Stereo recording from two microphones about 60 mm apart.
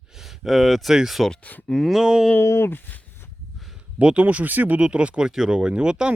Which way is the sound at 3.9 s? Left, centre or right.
Right.